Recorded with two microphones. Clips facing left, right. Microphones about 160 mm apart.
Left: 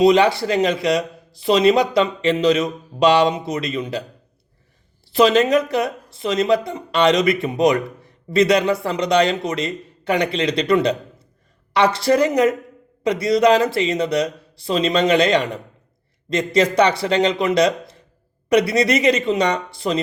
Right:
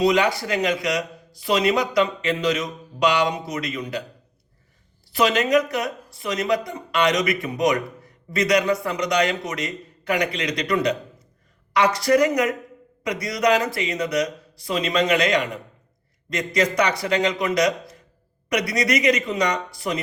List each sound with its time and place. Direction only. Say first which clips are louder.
0.0 s speech: left 5 dB; 25° left (ahead or behind)
5.1 s speech: left 4 dB; 25° left (ahead or behind)